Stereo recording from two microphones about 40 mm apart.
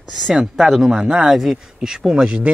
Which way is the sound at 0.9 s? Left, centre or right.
Right.